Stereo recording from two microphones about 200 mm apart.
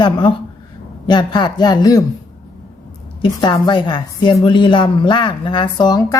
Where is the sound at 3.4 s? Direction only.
20° left (ahead or behind).